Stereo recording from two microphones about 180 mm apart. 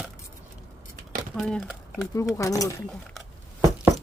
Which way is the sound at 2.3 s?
15° left (ahead or behind).